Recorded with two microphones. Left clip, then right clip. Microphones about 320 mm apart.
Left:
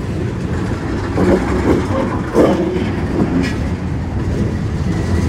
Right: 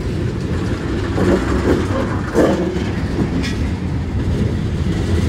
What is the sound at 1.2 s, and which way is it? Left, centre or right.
Vehicle, centre.